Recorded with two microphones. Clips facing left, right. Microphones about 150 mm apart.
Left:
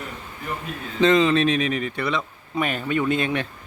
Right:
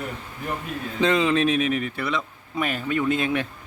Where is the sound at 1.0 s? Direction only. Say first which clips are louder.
Left 3 dB; 10° right (ahead or behind).